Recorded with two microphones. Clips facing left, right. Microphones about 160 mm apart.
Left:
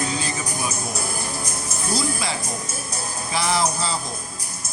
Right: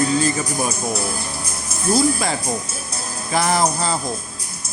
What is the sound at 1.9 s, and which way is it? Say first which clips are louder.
Speech: right 7 dB; 45° right (ahead or behind).